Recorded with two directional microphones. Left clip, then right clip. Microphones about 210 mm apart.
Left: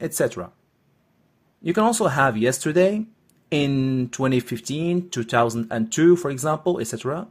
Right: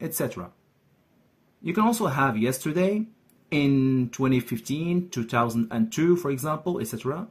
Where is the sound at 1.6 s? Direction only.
25° left (ahead or behind).